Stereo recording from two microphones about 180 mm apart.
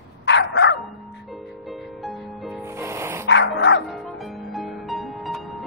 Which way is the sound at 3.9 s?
Centre (ahead or behind).